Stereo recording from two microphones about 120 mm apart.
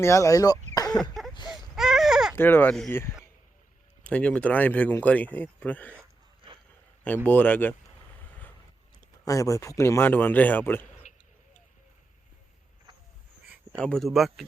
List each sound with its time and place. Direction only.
0.0 s speech: 25° left (ahead or behind)
0.7 s throat clearing: 30° left (ahead or behind)
1.5 s baby cry: 5° right (ahead or behind)
2.3 s speech: 15° left (ahead or behind)
4.0 s speech: 10° left (ahead or behind)
7.3 s speech: 15° left (ahead or behind)
9.2 s speech: 25° left (ahead or behind)
13.7 s speech: 5° left (ahead or behind)